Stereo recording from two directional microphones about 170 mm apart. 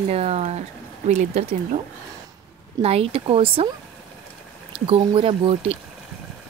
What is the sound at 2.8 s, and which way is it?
Speech, 35° right (ahead or behind).